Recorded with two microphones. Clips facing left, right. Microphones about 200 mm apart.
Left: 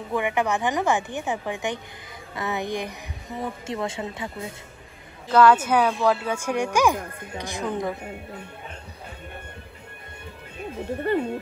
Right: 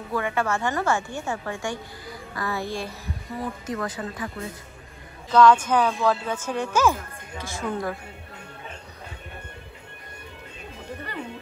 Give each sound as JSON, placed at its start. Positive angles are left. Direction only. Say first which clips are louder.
{"t": 0.1, "sound": "speech", "louder": "left 2 dB", "side_deg": 15}
{"t": 5.3, "sound": "speech", "louder": "even", "side_deg": 5}